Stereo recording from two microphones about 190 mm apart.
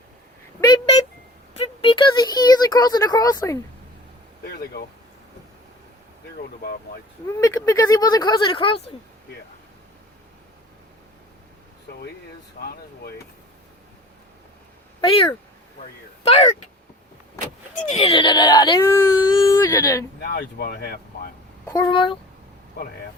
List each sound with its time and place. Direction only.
0.6 s a sound: 20° left (ahead or behind)
4.4 s speech: 55° left (ahead or behind)
6.6 s speech: 50° left (ahead or behind)
7.3 s speech: 15° left (ahead or behind)
15.0 s speech: 25° left (ahead or behind)
17.9 s speech: 25° left (ahead or behind)
20.2 s speech: 55° left (ahead or behind)
21.7 s speech: 20° left (ahead or behind)